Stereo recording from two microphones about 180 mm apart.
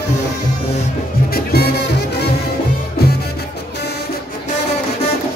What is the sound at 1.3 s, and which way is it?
Music, 60° left (ahead or behind).